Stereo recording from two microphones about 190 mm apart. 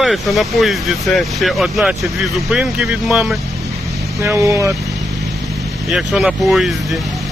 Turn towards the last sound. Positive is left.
turn(degrees=0)  # may be behind; listen again after turning